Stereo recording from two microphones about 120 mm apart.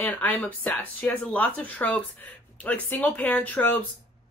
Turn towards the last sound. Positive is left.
turn(degrees=15)  # may be behind; listen again after turning